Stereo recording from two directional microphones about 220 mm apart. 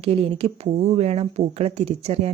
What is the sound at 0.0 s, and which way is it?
Speech, 25° right (ahead or behind).